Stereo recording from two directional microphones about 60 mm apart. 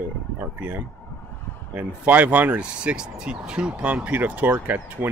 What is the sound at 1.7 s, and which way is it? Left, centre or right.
Speech, right.